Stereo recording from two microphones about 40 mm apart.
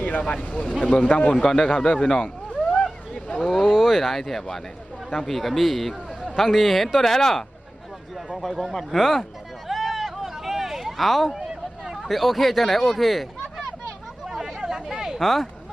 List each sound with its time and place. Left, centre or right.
0.8 s speech: left
1.4 s speech: centre
1.6 s speech: left
2.0 s speech: left
2.2 s vehicle: left
3.6 s a man's voice: centre
7.0 s a man's voice: centre
9.0 s a man's voice: centre
9.6 s a sound: centre
11.9 s speech: centre
14.3 s a sound: centre